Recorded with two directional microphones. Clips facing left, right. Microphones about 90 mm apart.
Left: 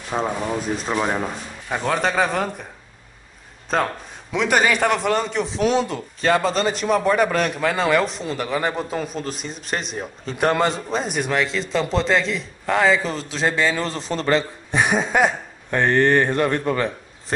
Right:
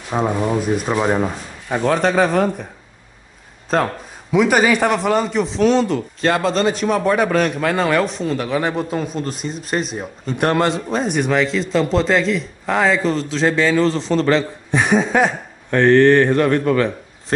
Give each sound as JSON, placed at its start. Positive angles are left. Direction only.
{"t": 0.1, "sound": "a man's voice", "side_deg": -5}
{"t": 3.7, "sound": "a man's voice", "side_deg": 0}